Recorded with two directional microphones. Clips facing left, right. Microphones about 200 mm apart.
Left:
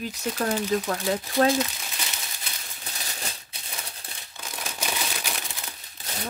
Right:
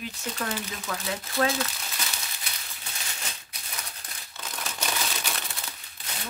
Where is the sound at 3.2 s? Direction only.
30° left (ahead or behind).